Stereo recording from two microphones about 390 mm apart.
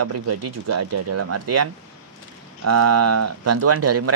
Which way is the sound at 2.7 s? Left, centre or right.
Right.